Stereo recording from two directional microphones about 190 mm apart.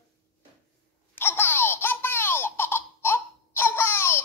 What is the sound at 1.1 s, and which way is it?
Baby laughter, 10° left (ahead or behind).